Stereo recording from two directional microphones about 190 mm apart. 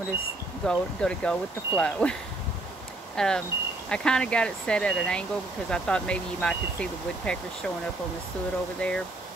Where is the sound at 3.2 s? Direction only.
5° left (ahead or behind).